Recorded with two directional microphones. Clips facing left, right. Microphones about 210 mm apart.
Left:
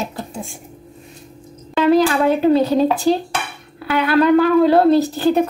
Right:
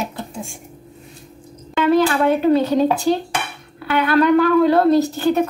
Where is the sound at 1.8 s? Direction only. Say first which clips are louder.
Left 2 dB; 35° left (ahead or behind).